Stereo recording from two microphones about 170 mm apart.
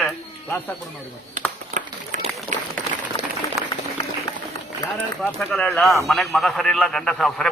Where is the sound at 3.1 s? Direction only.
30° left (ahead or behind).